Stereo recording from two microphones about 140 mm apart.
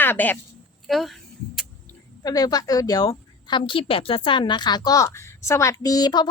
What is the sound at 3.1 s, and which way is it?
A woman's voice, 40° left (ahead or behind).